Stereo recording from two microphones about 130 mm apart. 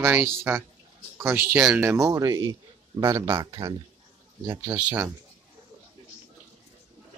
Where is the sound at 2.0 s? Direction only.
25° right (ahead or behind).